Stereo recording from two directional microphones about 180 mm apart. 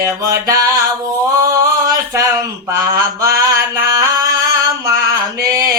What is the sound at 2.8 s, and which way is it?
Mantra, 20° right (ahead or behind).